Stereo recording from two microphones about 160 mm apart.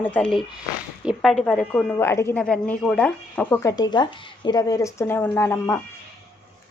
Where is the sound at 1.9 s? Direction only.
15° left (ahead or behind).